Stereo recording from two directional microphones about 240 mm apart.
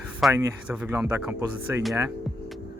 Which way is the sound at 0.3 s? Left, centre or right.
Centre.